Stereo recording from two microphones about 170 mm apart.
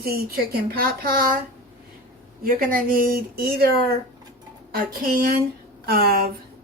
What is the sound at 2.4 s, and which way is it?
Speech, 55° right (ahead or behind).